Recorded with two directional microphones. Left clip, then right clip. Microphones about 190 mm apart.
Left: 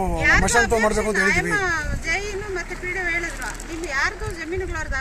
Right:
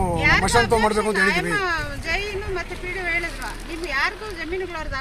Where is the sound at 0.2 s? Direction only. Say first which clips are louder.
Left 1 dB; centre (ahead or behind).